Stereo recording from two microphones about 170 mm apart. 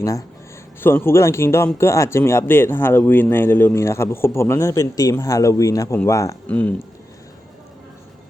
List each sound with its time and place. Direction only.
0.0 s speech: 20° left (ahead or behind)